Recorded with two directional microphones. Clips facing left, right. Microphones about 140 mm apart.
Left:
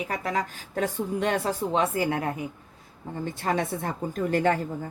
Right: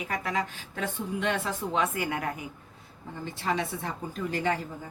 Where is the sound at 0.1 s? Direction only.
40° left (ahead or behind).